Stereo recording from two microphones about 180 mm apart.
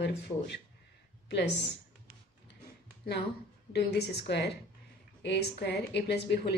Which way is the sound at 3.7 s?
65° left (ahead or behind).